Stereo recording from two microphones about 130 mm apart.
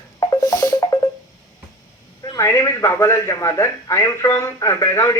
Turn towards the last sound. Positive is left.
turn(degrees=25)  # may be behind; listen again after turning